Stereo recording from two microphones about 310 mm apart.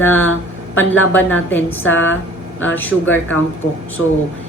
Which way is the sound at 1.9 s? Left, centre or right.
Left.